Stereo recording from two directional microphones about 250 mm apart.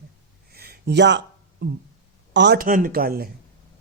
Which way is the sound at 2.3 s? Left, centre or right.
Right.